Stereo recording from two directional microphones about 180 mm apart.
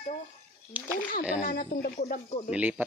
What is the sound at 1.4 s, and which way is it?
Speech, 60° left (ahead or behind).